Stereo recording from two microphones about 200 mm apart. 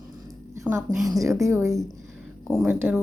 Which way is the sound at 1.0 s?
15° right (ahead or behind).